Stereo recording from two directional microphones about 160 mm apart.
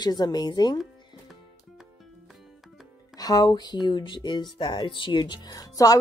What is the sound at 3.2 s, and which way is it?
Speech, 25° left (ahead or behind).